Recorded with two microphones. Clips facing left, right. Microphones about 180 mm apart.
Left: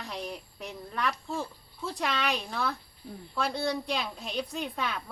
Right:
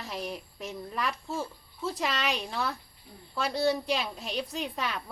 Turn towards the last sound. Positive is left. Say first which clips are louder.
# even
turn(degrees=0)  # may be behind; listen again after turning